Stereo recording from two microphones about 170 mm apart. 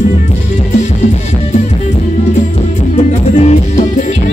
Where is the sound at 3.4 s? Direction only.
40° left (ahead or behind).